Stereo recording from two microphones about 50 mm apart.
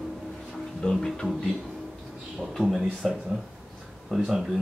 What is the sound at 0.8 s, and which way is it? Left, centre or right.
Music, left.